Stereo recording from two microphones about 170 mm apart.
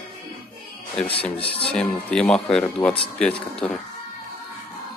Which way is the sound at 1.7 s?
5° left (ahead or behind).